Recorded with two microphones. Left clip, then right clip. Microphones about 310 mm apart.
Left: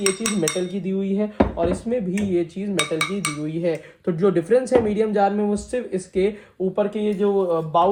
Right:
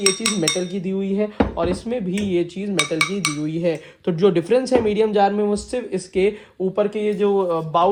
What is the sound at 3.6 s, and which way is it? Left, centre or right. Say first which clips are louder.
Speech: right 1 dB; centre.